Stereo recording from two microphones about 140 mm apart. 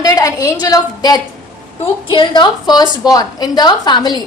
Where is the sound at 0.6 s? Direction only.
30° left (ahead or behind).